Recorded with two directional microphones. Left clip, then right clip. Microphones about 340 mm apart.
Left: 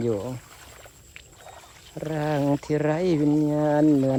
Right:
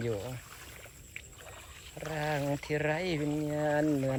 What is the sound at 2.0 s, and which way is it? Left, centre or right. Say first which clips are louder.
Speech: left 8 dB; centre.